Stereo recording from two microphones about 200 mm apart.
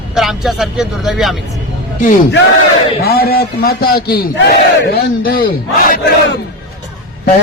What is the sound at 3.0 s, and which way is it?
A man's voice, 50° left (ahead or behind).